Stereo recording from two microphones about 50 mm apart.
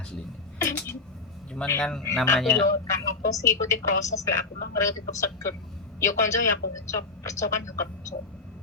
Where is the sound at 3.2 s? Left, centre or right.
Left.